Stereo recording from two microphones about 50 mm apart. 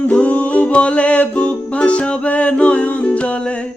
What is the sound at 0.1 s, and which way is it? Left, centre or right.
Music, left.